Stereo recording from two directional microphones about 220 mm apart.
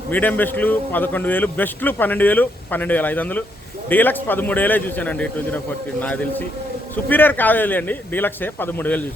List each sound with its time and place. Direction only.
0.1 s a man's voice: 10° left (ahead or behind)